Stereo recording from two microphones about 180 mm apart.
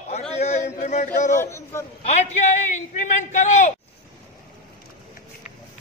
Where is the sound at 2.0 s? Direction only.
40° left (ahead or behind).